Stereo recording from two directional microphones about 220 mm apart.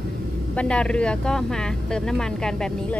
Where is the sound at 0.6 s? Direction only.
5° left (ahead or behind).